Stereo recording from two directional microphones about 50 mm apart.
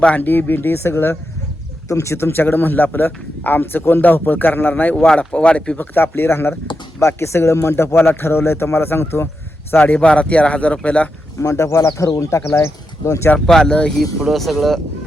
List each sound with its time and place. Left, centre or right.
0.2 s speech: left
1.9 s speech: left
2.2 s speech: left
4.9 s speech: left
5.7 s speech: left
7.2 s speech: left
9.7 s speech: left
11.3 s speech: left
13.5 s speech: centre